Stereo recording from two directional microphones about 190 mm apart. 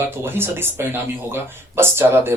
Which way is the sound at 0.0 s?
10° right (ahead or behind).